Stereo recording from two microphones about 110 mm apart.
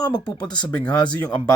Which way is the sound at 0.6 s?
10° left (ahead or behind).